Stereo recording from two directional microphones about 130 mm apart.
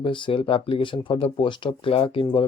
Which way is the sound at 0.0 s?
40° left (ahead or behind).